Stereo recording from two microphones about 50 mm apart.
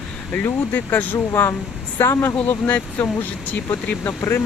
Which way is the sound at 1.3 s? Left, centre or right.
Left.